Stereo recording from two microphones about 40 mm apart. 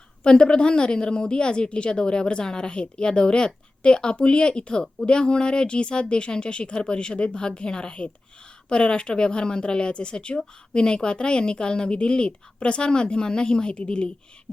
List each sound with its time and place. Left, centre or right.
0.2 s a woman's voice: left